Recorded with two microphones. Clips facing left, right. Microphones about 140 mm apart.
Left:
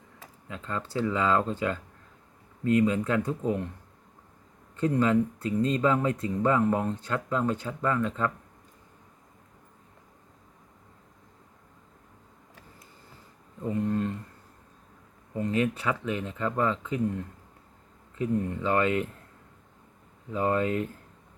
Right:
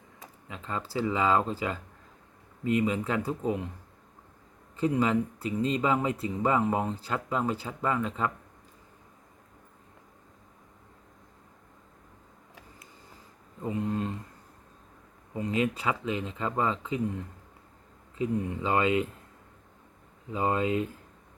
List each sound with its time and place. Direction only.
0.4 s speech: 10° right (ahead or behind)
4.8 s speech: 10° right (ahead or behind)
13.7 s speech: 10° right (ahead or behind)
15.4 s speech: 10° right (ahead or behind)
18.2 s speech: 15° right (ahead or behind)
20.3 s speech: 15° right (ahead or behind)